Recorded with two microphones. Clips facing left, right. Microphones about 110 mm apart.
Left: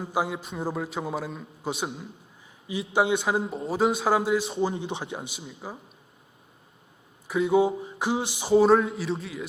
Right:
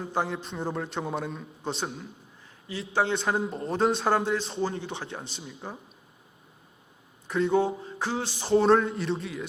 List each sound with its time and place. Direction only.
0.0 s a man's voice: 5° left (ahead or behind)
4.6 s speech: 15° left (ahead or behind)
5.1 s a man's voice: 5° left (ahead or behind)
7.3 s a man's voice: 5° left (ahead or behind)
7.8 s a man's voice: 15° left (ahead or behind)